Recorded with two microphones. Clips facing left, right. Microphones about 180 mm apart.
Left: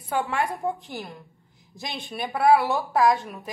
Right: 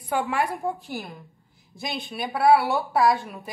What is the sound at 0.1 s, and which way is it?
A woman's voice, 5° right (ahead or behind).